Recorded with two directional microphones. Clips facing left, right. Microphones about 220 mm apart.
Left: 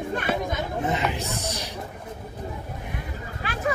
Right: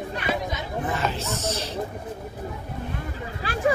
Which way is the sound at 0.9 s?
20° left (ahead or behind).